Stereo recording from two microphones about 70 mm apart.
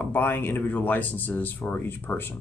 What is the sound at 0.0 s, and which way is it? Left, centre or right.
Speech, left.